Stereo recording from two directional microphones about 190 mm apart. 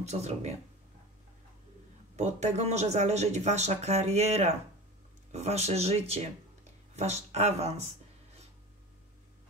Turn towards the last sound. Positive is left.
turn(degrees=-35)  # may be behind; listen again after turning